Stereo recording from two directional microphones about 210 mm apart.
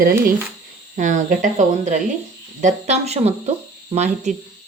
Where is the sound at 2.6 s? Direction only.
30° right (ahead or behind).